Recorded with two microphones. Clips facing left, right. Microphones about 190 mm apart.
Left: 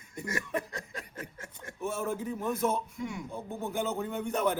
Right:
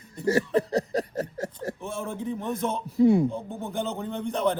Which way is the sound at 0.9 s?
40° right (ahead or behind).